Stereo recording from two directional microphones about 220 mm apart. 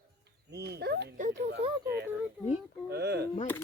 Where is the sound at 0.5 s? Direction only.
50° right (ahead or behind).